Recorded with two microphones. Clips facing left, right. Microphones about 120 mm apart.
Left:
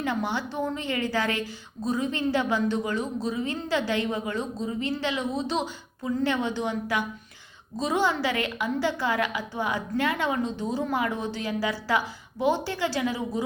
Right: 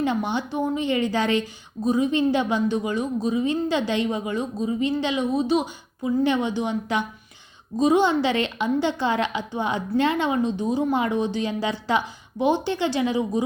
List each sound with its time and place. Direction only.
0.0 s a woman's voice: 20° right (ahead or behind)